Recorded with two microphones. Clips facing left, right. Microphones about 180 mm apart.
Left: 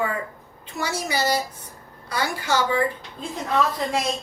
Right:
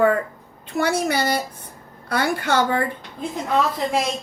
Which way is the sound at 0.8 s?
55° right (ahead or behind).